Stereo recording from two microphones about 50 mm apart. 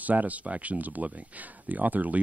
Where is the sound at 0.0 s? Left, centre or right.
Right.